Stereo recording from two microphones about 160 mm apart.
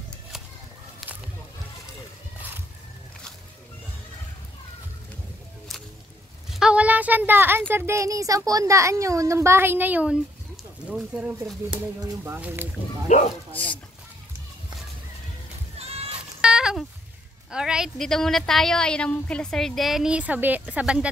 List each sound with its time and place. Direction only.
1.0 s a sound: centre (ahead or behind)
6.5 s a woman's voice: 5° right (ahead or behind)
13.1 s speech: 45° left (ahead or behind)
13.5 s speech: 10° left (ahead or behind)
15.8 s goat: 40° right (ahead or behind)
16.3 s a sound: 5° right (ahead or behind)
17.5 s a woman's voice: 5° right (ahead or behind)